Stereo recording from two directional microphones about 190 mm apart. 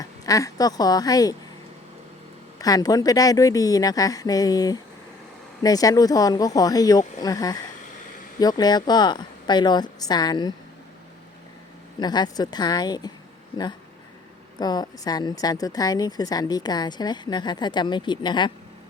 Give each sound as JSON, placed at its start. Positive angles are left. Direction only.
{"t": 0.0, "sound": "speech", "side_deg": 20}
{"t": 2.6, "sound": "a woman's voice", "side_deg": 20}
{"t": 11.9, "sound": "a woman's voice", "side_deg": 20}
{"t": 14.6, "sound": "a woman's voice", "side_deg": 20}